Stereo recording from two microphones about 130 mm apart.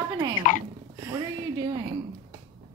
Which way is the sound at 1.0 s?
20° right (ahead or behind).